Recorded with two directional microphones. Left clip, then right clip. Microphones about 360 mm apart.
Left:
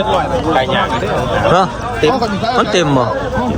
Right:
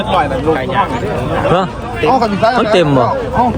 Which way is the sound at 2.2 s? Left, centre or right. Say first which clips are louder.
Right 4 dB; centre.